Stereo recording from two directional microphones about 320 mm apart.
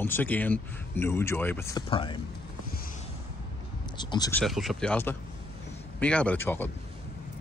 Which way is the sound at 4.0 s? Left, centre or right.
Centre.